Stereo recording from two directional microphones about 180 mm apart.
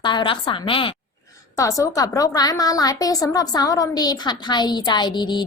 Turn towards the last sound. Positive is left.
turn(degrees=25)  # may be behind; listen again after turning